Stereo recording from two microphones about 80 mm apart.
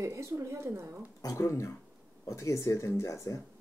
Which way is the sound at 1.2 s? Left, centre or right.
Left.